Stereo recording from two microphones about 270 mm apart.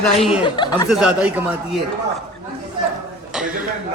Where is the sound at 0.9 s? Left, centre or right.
Centre.